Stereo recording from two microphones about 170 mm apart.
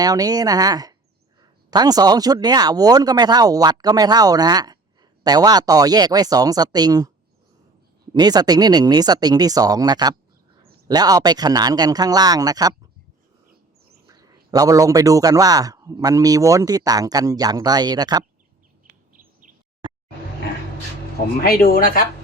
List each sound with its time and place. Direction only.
0.0 s a man's voice: 20° right (ahead or behind)
8.1 s a man's voice: 25° right (ahead or behind)
14.1 s a man's voice: 20° right (ahead or behind)
18.9 s bird: 50° right (ahead or behind)
19.8 s music: 30° right (ahead or behind)
21.4 s speech: 60° left (ahead or behind)